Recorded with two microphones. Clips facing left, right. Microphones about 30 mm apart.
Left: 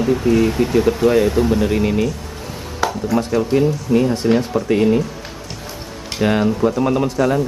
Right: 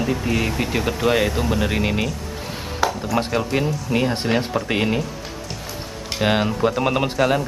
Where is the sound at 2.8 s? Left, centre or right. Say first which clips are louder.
Left 1 dB; centre.